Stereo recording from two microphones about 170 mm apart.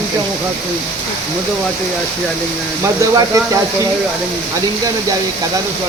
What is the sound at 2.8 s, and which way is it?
Speech, 20° right (ahead or behind).